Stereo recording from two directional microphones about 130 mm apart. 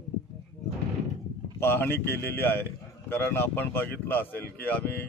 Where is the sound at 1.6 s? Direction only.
15° left (ahead or behind).